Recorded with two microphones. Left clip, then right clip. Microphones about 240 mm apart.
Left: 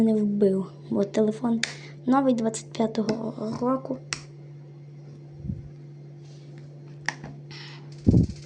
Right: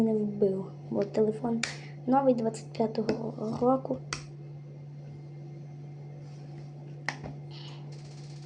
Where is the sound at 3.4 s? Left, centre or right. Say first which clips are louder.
Right 1 dB; centre.